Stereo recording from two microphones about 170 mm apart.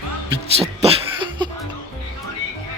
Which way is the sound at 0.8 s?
30° right (ahead or behind).